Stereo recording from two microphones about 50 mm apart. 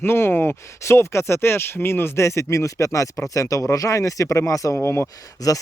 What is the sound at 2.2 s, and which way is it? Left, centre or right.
Speech, left.